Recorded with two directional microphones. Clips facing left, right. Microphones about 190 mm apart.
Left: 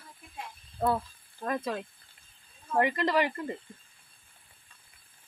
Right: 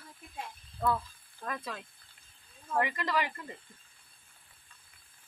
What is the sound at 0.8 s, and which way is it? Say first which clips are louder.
Speech: left 3 dB; 35° left (ahead or behind).